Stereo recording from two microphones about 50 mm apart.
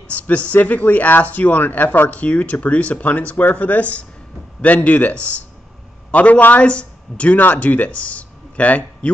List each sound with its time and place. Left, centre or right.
0.1 s speech: left
7.3 s speech: left